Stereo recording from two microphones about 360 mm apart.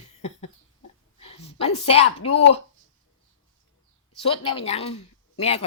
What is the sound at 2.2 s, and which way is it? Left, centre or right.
Speech, centre.